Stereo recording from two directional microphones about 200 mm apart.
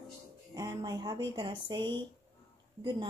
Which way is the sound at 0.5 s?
15° right (ahead or behind).